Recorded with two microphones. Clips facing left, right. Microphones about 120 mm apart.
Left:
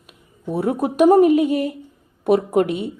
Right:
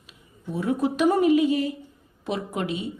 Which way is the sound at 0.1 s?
60° left (ahead or behind).